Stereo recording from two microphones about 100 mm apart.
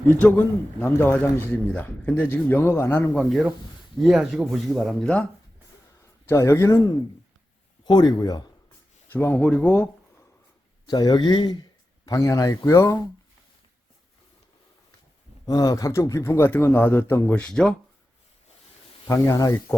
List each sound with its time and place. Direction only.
0.1 s a man's voice: 15° left (ahead or behind)
3.2 s speech: centre (ahead or behind)
6.2 s a man's voice: 30° left (ahead or behind)
7.9 s speech: 45° left (ahead or behind)
9.0 s a man's voice: 20° left (ahead or behind)
10.8 s speech: 45° left (ahead or behind)
12.0 s speech: 35° left (ahead or behind)
15.4 s a man's voice: 40° left (ahead or behind); by 17.7 s 10° left (ahead or behind)
19.0 s speech: 30° left (ahead or behind)